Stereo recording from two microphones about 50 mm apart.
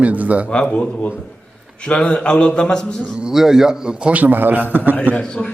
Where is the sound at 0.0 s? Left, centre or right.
Right.